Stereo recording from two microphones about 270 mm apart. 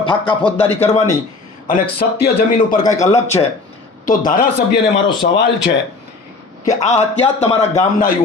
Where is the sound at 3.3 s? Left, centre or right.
Centre.